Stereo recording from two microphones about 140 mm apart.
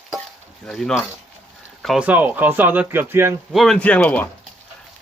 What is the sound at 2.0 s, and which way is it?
Speech, 10° right (ahead or behind).